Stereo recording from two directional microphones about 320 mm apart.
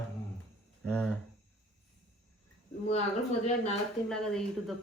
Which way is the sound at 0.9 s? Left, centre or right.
Centre.